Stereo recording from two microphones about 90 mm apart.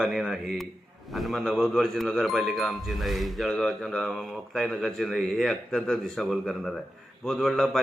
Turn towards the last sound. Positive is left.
turn(degrees=0)  # may be behind; listen again after turning